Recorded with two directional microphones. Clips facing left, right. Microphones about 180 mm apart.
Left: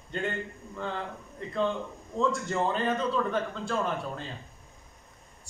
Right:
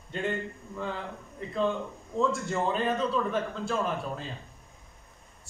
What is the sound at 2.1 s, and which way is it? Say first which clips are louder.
Speech: even; centre (ahead or behind).